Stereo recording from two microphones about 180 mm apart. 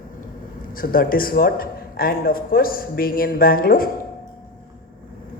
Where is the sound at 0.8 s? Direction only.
50° left (ahead or behind).